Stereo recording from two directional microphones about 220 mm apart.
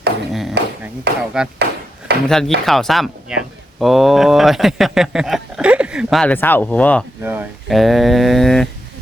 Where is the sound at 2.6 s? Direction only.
Centre (ahead or behind).